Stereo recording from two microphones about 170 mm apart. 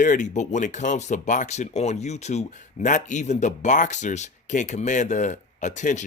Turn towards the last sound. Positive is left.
turn(degrees=45)  # may be behind; listen again after turning